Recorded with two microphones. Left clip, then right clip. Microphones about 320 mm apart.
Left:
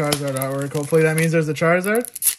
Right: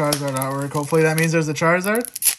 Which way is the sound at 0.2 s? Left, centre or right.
Centre.